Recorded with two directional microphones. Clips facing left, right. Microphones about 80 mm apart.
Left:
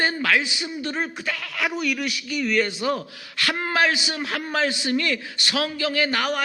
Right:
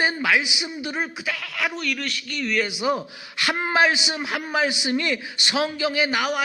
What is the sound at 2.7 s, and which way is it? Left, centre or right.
A man's voice, centre.